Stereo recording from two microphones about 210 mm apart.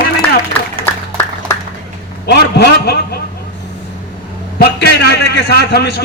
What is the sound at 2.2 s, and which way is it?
Speech, 50° left (ahead or behind).